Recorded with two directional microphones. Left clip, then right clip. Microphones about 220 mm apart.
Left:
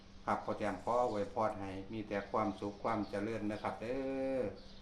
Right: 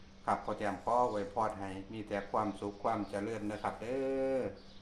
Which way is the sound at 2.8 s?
30° right (ahead or behind).